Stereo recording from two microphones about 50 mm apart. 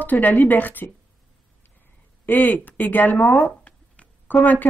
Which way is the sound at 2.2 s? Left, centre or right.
Left.